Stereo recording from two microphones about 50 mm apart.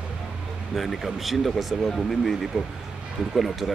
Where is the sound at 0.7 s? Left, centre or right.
Centre.